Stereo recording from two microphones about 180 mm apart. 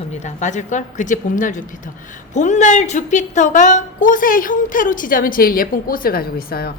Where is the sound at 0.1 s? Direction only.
40° left (ahead or behind).